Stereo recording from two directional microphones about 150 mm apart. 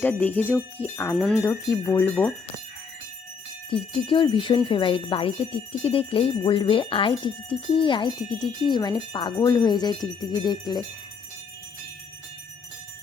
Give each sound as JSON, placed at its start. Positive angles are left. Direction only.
{"t": 0.0, "sound": "jingle bell", "side_deg": 10}
{"t": 1.1, "sound": "speech", "side_deg": 0}
{"t": 1.4, "sound": "jingle bell", "side_deg": 15}
{"t": 3.7, "sound": "jingle bell", "side_deg": 35}
{"t": 7.7, "sound": "speech", "side_deg": 35}